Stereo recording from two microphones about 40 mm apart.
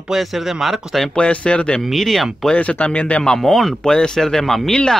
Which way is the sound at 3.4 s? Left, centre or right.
Centre.